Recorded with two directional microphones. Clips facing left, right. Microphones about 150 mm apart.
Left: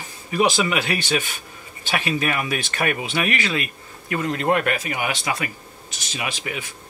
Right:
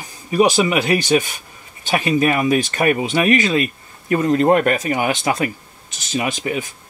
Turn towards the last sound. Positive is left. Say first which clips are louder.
# right 7 dB
turn(degrees=-40)  # may be behind; listen again after turning